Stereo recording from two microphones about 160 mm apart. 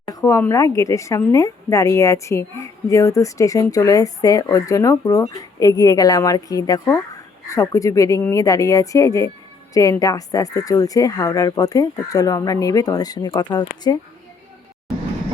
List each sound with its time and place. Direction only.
0.0 s speech: 20° left (ahead or behind)